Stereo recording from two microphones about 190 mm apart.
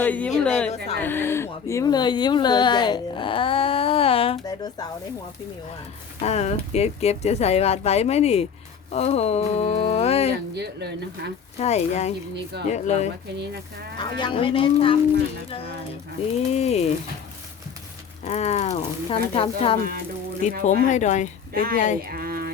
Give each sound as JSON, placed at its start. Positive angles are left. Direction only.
{"t": 0.0, "sound": "speech", "side_deg": 10}
{"t": 6.1, "sound": "speech", "side_deg": 35}
{"t": 10.3, "sound": "speech", "side_deg": -60}
{"t": 11.6, "sound": "speech", "side_deg": 35}
{"t": 13.4, "sound": "speech", "side_deg": -60}
{"t": 14.0, "sound": "speech", "side_deg": 25}
{"t": 18.3, "sound": "speech", "side_deg": 35}
{"t": 22.0, "sound": "speech", "side_deg": -50}